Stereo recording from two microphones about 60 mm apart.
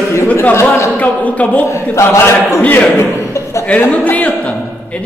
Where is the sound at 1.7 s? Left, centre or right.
Left.